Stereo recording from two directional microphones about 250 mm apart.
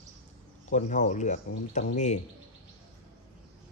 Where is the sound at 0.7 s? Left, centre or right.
Left.